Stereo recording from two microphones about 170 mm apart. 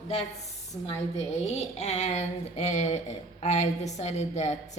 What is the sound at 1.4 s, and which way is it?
Speech, 40° left (ahead or behind).